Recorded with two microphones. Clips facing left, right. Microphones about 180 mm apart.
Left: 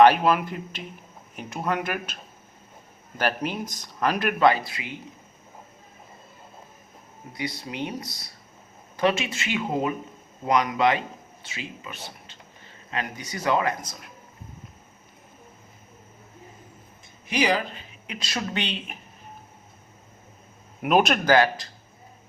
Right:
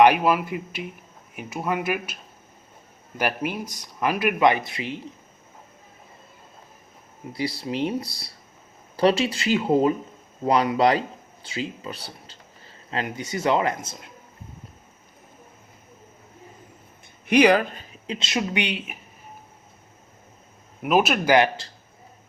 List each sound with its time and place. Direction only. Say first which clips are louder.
0.0 s speech: even; 10° right (ahead or behind)
3.2 s speech: even; 10° right (ahead or behind); by 4.9 s 25° right (ahead or behind)
7.3 s a man's voice: right 5 dB; 30° right (ahead or behind)
17.2 s speech: right 7 dB; 60° right (ahead or behind)
18.0 s speech: right 5 dB; 25° right (ahead or behind); by 18.9 s 10° right (ahead or behind)
20.8 s speech: even; 5° right (ahead or behind)
21.3 s a man's voice: right 2 dB; 25° right (ahead or behind)